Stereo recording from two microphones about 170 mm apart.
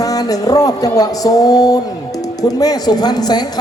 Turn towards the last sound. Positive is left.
turn(degrees=25)  # may be behind; listen again after turning